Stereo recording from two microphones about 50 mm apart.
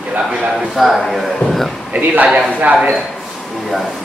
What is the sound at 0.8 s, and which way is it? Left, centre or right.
Speech, centre.